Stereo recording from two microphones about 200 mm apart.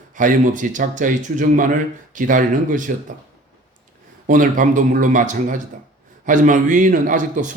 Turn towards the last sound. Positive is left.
turn(degrees=-40)  # may be behind; listen again after turning